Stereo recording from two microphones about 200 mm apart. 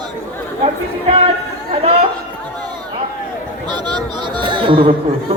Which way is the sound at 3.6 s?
20° right (ahead or behind).